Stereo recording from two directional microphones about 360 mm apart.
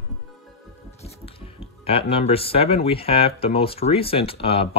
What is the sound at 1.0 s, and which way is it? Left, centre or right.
Speech, centre.